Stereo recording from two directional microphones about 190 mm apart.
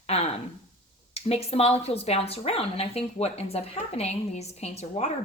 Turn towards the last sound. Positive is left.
turn(degrees=35)  # may be behind; listen again after turning